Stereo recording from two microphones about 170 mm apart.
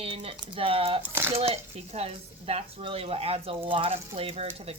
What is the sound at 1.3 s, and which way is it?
Speech, 35° right (ahead or behind).